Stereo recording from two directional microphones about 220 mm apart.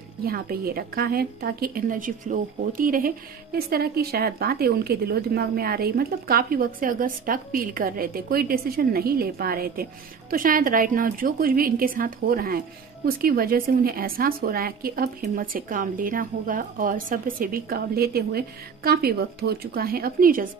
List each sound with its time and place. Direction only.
0.2 s a woman's voice: 45° right (ahead or behind)